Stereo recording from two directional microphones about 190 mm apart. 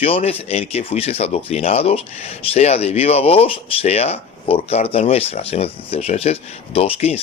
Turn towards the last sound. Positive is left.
turn(degrees=30)  # may be behind; listen again after turning